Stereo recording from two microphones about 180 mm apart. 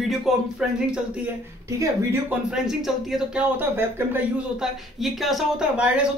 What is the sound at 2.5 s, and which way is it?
A man's voice, centre (ahead or behind).